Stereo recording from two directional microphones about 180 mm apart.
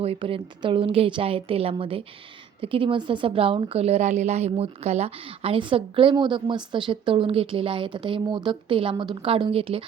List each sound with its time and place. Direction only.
0.0 s a woman's voice: 30° right (ahead or behind)